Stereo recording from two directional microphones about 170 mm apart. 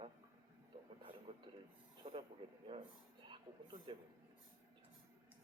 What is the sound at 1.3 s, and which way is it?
Speech, 30° right (ahead or behind).